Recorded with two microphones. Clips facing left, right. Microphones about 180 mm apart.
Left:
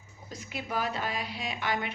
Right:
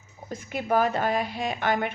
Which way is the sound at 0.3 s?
50° right (ahead or behind).